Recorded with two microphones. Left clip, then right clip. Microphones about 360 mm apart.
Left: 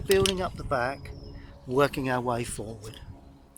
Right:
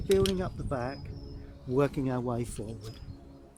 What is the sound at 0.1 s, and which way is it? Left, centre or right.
Speech, left.